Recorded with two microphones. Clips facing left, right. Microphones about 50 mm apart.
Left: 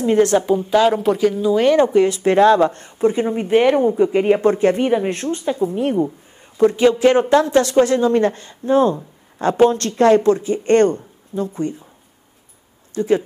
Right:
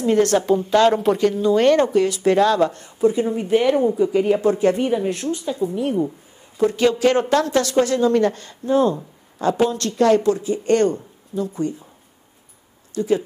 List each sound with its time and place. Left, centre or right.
0.0 s a woman's voice: left
0.5 s speech: centre
1.8 s speech: left
6.8 s speech: left
12.9 s speech: left